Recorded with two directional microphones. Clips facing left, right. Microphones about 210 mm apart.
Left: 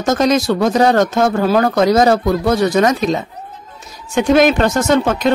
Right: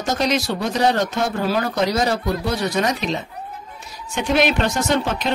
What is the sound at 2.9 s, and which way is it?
Speech, 45° left (ahead or behind).